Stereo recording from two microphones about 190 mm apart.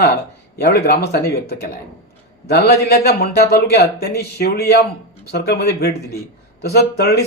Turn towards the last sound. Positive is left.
turn(degrees=55)  # may be behind; listen again after turning